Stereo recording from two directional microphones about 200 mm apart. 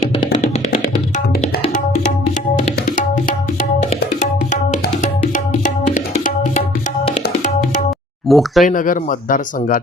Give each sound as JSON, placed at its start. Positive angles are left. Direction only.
{"t": 0.4, "sound": "music", "side_deg": 40}
{"t": 2.8, "sound": "music", "side_deg": 40}
{"t": 7.1, "sound": "tabla", "side_deg": 40}
{"t": 8.3, "sound": "speech", "side_deg": 0}
{"t": 8.6, "sound": "speech", "side_deg": 40}